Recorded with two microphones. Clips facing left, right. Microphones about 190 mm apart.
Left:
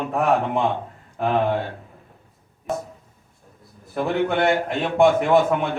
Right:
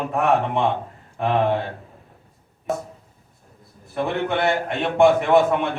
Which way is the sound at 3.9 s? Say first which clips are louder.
Left 2 dB; centre (ahead or behind).